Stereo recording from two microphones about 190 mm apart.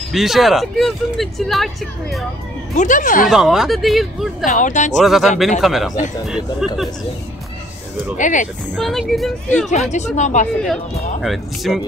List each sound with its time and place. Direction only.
0.1 s speech: centre (ahead or behind)
2.7 s speech: 40° left (ahead or behind)
3.3 s speech: centre (ahead or behind)
4.5 s speech: 40° left (ahead or behind)
4.9 s speech: centre (ahead or behind)
8.2 s speech: 40° left (ahead or behind)
8.7 s speech: centre (ahead or behind)
9.7 s speech: 40° left (ahead or behind)
11.2 s speech: centre (ahead or behind)